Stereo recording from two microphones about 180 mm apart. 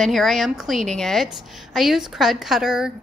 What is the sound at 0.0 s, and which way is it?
A woman's voice, centre (ahead or behind).